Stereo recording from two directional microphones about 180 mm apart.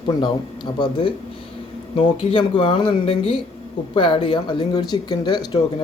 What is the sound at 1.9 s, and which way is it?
Speech, 30° left (ahead or behind).